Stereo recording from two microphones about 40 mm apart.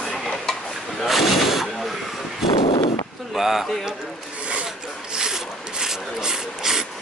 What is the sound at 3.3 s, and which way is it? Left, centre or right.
Speech, centre.